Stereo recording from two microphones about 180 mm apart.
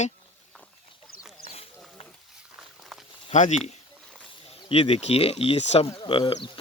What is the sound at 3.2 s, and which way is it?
Speech, 40° left (ahead or behind).